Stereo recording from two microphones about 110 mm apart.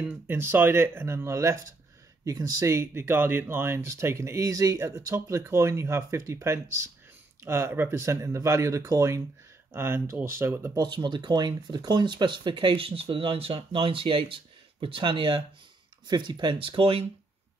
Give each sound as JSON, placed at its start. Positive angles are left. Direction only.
{"t": 0.3, "sound": "speech", "side_deg": -20}
{"t": 10.8, "sound": "speech", "side_deg": -40}